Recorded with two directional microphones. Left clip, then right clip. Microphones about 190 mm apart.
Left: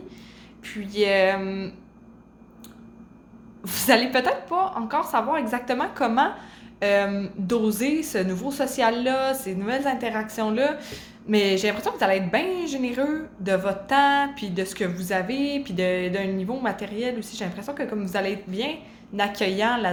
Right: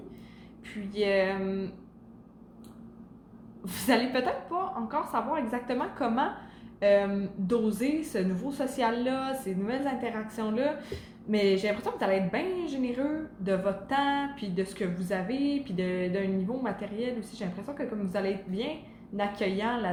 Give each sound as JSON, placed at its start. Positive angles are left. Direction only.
{"t": 0.6, "sound": "a woman's voice", "side_deg": 35}
{"t": 3.6, "sound": "a woman's voice", "side_deg": 35}